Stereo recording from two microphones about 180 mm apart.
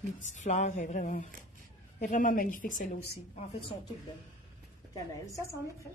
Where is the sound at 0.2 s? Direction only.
45° left (ahead or behind).